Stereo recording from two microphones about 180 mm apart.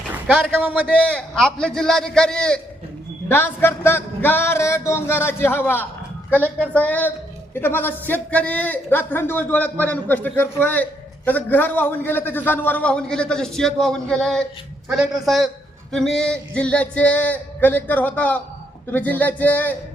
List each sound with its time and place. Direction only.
0.3 s a man's voice: 5° right (ahead or behind)
0.9 s a man's voice: 5° left (ahead or behind)